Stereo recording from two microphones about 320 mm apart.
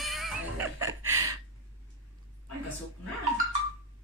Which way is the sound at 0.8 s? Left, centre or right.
Centre.